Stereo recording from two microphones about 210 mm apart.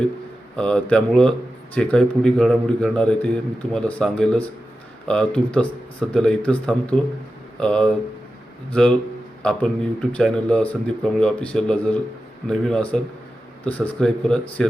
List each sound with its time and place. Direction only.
0.5 s speech: 5° left (ahead or behind)
9.4 s speech: 5° left (ahead or behind)